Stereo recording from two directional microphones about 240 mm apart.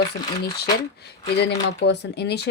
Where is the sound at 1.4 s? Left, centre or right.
Left.